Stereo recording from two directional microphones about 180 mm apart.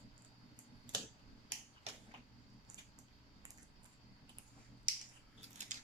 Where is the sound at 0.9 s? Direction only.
25° right (ahead or behind).